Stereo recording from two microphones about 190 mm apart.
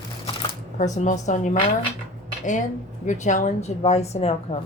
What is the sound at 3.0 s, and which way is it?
A woman's voice, 40° left (ahead or behind).